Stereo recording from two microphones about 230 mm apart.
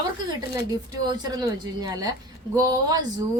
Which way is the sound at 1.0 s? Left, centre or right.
Centre.